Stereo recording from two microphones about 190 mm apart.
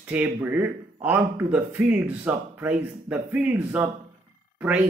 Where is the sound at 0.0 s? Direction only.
10° right (ahead or behind).